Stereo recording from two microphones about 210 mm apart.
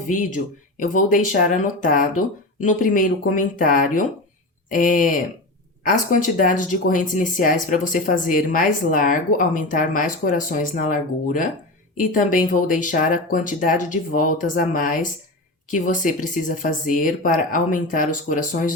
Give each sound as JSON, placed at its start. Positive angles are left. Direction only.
{"t": 0.1, "sound": "speech", "side_deg": 40}